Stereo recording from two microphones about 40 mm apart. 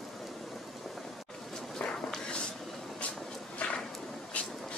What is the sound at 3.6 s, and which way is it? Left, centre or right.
Whip, left.